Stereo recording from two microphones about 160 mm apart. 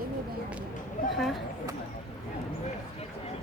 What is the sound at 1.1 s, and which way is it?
Speech, centre (ahead or behind).